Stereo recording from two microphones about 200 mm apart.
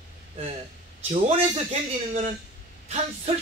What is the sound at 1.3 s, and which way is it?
A man's voice, 30° right (ahead or behind).